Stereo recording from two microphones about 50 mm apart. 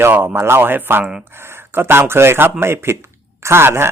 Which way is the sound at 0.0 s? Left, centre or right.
Right.